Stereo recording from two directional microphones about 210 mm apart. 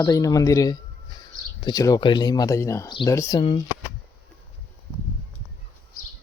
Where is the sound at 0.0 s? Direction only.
15° left (ahead or behind).